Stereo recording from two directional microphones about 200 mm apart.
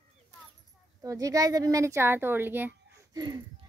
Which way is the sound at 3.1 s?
20° right (ahead or behind).